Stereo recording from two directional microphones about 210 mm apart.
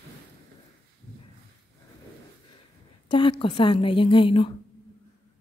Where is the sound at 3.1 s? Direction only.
25° left (ahead or behind).